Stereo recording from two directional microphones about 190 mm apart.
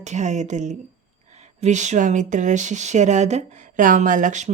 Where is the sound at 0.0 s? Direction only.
40° right (ahead or behind).